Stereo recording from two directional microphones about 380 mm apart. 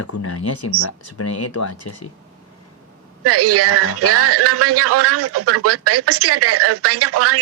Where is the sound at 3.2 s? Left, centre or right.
Right.